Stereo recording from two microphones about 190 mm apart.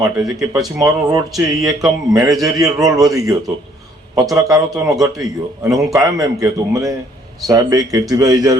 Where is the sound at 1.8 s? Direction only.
15° right (ahead or behind).